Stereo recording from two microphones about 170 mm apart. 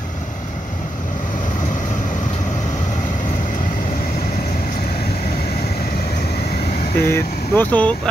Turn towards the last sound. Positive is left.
turn(degrees=10)  # may be behind; listen again after turning